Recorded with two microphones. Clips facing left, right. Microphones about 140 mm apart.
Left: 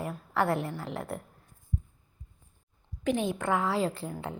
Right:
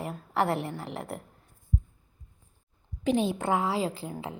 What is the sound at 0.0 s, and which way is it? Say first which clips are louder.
Speech: right 1 dB; 25° right (ahead or behind).